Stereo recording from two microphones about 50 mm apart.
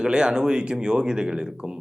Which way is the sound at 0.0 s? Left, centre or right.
Centre.